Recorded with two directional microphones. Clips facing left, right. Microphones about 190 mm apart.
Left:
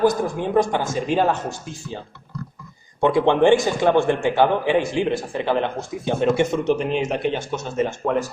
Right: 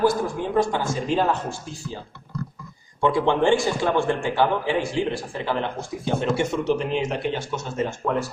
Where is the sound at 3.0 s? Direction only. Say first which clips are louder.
Left 4 dB; 20° left (ahead or behind).